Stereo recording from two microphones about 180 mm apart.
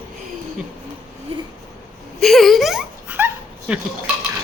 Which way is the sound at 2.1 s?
Centre (ahead or behind).